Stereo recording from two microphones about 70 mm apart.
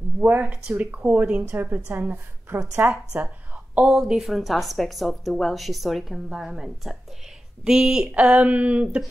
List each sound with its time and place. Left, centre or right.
0.2 s speech: right